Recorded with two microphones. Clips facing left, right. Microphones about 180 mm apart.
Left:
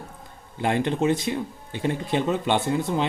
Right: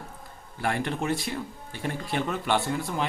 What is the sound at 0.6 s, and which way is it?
Speech, 20° left (ahead or behind).